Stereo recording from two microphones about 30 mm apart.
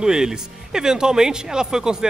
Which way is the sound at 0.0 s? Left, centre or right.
Right.